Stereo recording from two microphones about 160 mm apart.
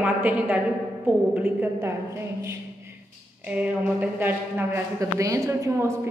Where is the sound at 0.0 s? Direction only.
10° right (ahead or behind).